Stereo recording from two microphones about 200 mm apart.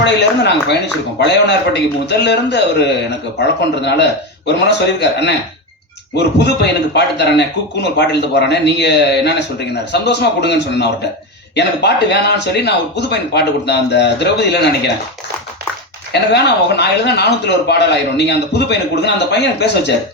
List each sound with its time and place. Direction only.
0.0 s a man's voice: 60° left (ahead or behind)
16.1 s a man's voice: 55° left (ahead or behind)